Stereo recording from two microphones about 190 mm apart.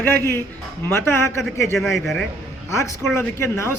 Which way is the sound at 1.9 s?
Centre (ahead or behind).